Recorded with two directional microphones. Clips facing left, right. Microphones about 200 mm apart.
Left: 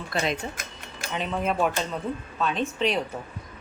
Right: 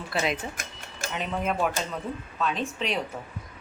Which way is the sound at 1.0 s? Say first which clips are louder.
Left 1 dB; 45° right (ahead or behind).